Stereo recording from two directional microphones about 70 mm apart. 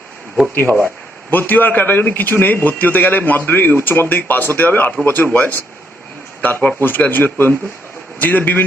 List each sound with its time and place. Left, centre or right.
0.5 s speech: left